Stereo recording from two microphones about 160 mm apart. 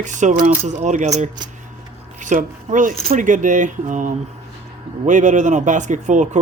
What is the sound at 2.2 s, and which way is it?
Speech, 50° right (ahead or behind).